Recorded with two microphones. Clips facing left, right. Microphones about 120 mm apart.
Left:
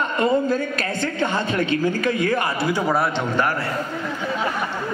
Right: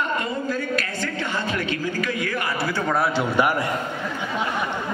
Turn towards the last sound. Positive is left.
turn(degrees=-15)  # may be behind; listen again after turning